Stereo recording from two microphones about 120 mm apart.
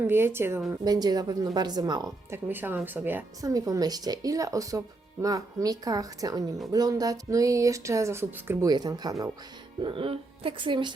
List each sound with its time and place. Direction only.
0.1 s music: 20° right (ahead or behind)
0.7 s speech: 35° right (ahead or behind)
2.3 s speech: 15° right (ahead or behind)
3.4 s speech: 30° right (ahead or behind)
6.7 s music: 30° right (ahead or behind)
8.6 s speech: 35° right (ahead or behind)
9.8 s speech: 50° right (ahead or behind)